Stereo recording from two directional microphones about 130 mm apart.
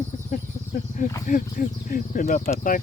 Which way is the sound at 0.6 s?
65° left (ahead or behind).